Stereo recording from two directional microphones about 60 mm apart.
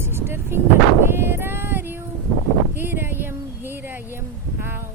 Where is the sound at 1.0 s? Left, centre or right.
Right.